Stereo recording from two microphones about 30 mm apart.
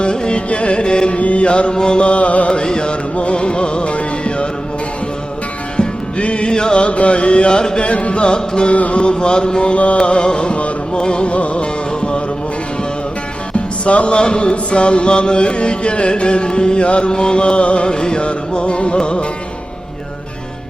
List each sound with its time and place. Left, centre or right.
0.0 s music: left
1.2 s chant: left
1.7 s music: left
2.0 s music: left
2.5 s music: left
5.7 s music: left
6.8 s mantra: left
8.7 s mantra: left
10.0 s music: left
11.3 s music: left
13.8 s mantra: left
16.8 s music: left
17.1 s mantra: left